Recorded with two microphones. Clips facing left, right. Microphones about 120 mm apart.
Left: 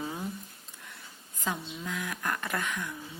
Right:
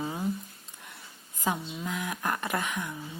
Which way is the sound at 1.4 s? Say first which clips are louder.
Right 4 dB; 20° right (ahead or behind).